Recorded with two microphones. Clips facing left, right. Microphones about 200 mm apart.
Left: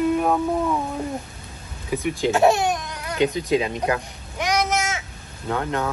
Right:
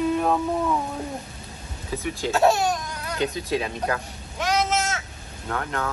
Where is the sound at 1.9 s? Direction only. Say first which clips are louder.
Left 4 dB; 15° left (ahead or behind).